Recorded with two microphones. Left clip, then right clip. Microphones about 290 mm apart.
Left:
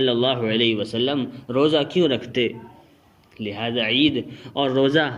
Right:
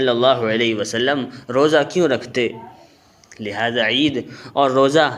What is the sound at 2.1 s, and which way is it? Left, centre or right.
A man's voice, centre.